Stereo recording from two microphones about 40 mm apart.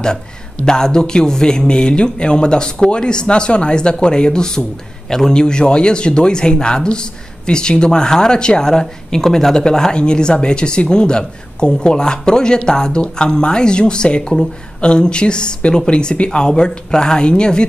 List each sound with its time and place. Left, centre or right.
0.0 s a man's voice: centre